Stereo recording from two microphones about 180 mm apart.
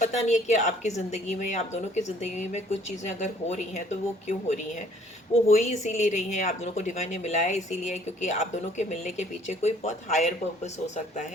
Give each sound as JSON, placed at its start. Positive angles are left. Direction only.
{"t": 0.0, "sound": "a woman's voice", "side_deg": 40}